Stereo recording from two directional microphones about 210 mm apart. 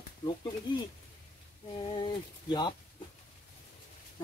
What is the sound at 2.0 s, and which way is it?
Speech, 20° left (ahead or behind).